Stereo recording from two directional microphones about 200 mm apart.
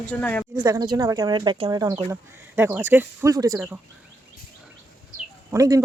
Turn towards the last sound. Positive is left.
turn(degrees=-15)  # may be behind; listen again after turning